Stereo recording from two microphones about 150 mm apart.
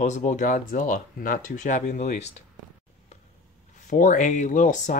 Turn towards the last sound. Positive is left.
turn(degrees=55)  # may be behind; listen again after turning